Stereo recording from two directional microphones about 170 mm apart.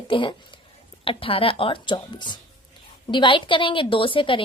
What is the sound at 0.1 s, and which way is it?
A woman's voice, 30° left (ahead or behind).